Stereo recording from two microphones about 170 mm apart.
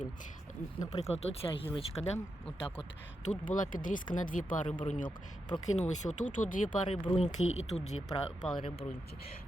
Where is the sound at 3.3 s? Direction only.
50° left (ahead or behind).